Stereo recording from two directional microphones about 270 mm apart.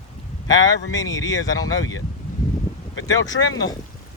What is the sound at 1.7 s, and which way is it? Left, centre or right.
Speech, left.